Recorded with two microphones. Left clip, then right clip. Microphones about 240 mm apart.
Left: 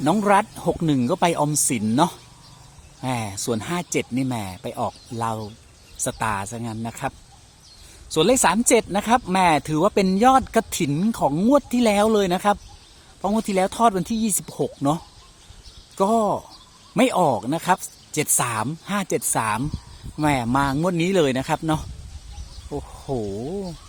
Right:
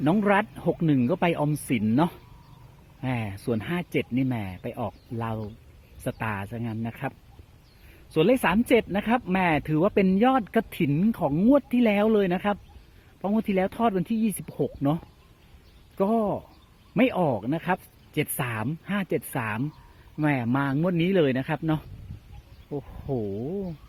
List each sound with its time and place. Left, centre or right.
0.0 s speech: centre
8.1 s speech: centre